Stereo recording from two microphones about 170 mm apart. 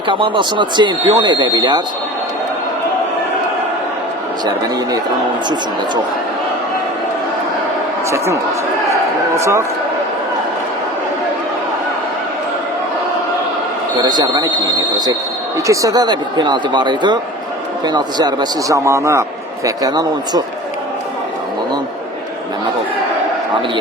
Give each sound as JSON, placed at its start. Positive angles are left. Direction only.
{"t": 0.1, "sound": "speech", "side_deg": -30}
{"t": 8.1, "sound": "a man's voice", "side_deg": -15}
{"t": 14.0, "sound": "speech", "side_deg": -25}